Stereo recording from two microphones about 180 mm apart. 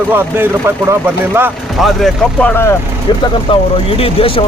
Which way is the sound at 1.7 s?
Centre (ahead or behind).